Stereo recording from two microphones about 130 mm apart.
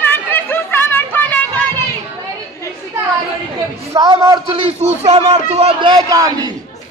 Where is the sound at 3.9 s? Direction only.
30° right (ahead or behind).